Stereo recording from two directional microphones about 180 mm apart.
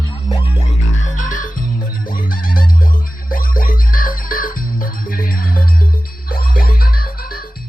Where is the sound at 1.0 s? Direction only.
45° left (ahead or behind).